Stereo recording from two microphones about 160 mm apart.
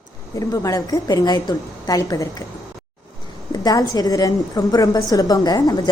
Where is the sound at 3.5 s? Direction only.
25° left (ahead or behind).